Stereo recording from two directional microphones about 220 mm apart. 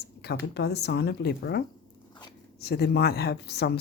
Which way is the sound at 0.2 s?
50° left (ahead or behind).